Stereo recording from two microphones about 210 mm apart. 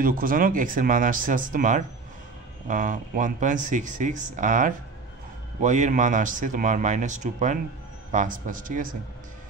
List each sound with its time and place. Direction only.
0.0 s speech: 40° right (ahead or behind)